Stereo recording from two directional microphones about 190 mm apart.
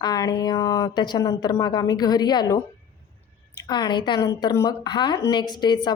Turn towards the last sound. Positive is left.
turn(degrees=20)  # may be behind; listen again after turning